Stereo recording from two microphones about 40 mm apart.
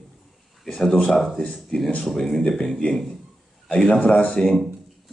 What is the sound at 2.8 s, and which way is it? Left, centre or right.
Speech, left.